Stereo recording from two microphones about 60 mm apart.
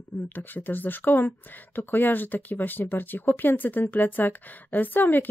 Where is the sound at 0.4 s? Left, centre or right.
Left.